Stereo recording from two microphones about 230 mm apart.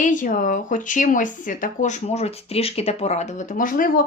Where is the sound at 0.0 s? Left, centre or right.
Left.